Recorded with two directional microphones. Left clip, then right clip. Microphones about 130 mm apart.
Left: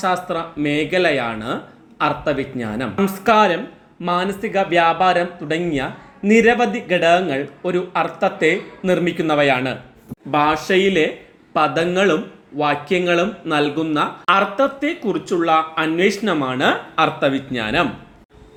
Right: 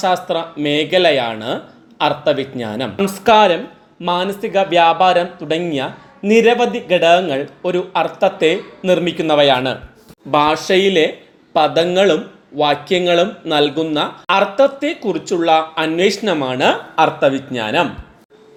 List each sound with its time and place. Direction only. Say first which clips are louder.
0.0 s speech: right 4 dB; 15° right (ahead or behind)